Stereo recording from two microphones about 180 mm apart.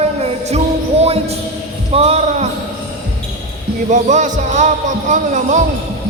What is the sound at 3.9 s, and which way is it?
Speech, 45° right (ahead or behind).